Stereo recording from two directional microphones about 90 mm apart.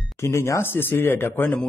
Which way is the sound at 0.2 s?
30° left (ahead or behind).